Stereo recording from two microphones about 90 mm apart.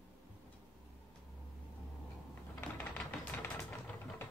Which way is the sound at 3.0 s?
15° left (ahead or behind).